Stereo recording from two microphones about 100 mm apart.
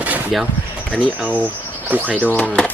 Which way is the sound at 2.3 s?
15° left (ahead or behind).